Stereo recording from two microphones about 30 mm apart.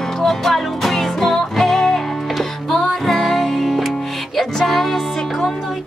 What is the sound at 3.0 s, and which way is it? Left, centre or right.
Music, centre.